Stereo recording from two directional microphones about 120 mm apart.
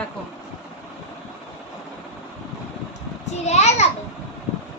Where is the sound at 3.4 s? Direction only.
70° left (ahead or behind).